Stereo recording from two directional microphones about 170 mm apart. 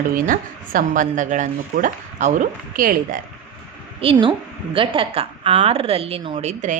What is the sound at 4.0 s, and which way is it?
A woman's voice, 30° right (ahead or behind).